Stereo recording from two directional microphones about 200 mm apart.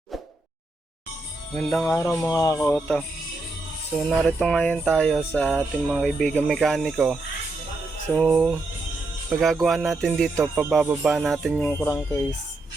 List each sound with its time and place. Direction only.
1.5 s speech: 10° left (ahead or behind)
3.9 s music: 5° left (ahead or behind)
11.7 s speech: 15° left (ahead or behind)